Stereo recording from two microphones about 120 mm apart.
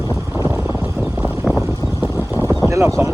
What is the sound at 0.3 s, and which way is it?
Boat, 25° right (ahead or behind).